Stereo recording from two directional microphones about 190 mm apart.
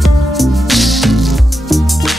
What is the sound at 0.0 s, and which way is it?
Music, centre (ahead or behind).